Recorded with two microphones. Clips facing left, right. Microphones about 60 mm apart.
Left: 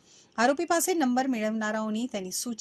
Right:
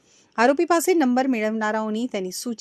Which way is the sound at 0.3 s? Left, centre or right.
Right.